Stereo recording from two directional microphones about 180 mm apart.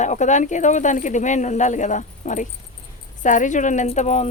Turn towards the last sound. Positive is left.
turn(degrees=40)  # may be behind; listen again after turning